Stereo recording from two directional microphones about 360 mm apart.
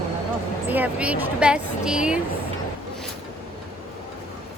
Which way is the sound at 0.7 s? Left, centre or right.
Centre.